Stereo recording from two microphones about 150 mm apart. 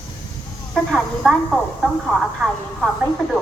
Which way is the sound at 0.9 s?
Centre (ahead or behind).